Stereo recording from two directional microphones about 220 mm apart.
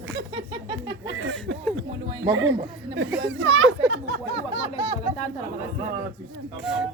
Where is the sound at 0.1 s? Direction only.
50° right (ahead or behind).